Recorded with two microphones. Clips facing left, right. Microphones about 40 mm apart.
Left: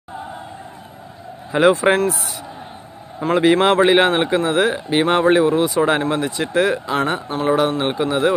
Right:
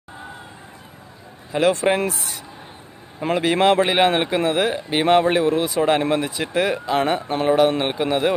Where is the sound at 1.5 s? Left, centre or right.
Centre.